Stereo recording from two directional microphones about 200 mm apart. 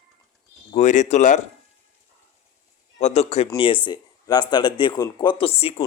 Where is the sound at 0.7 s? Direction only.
35° left (ahead or behind).